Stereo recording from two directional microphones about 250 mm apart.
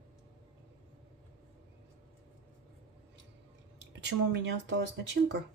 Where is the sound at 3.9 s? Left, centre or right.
Right.